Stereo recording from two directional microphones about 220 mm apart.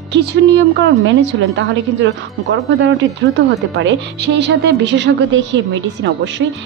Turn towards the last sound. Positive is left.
turn(degrees=-55)  # may be behind; listen again after turning